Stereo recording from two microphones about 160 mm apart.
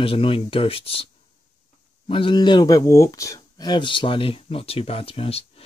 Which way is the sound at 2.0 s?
30° left (ahead or behind).